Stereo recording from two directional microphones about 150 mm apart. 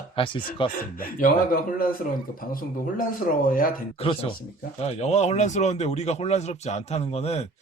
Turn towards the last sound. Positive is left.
turn(degrees=45)  # may be behind; listen again after turning